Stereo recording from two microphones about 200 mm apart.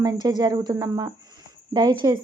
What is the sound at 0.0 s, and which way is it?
Speech, 20° right (ahead or behind).